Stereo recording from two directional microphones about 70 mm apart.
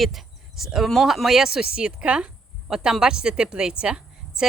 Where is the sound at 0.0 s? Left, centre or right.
Centre.